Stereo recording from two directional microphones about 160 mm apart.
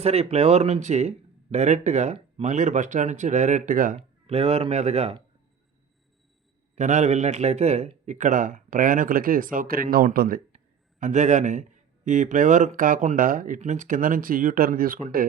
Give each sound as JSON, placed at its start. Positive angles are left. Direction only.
{"t": 0.0, "sound": "speech", "side_deg": -40}
{"t": 3.9, "sound": "speech", "side_deg": -40}
{"t": 6.7, "sound": "a man's voice", "side_deg": -45}
{"t": 11.0, "sound": "a man's voice", "side_deg": -50}